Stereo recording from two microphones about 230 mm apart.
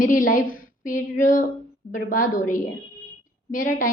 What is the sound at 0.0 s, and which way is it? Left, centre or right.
A woman's voice, left.